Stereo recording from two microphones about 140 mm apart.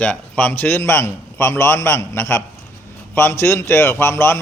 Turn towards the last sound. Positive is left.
turn(degrees=15)  # may be behind; listen again after turning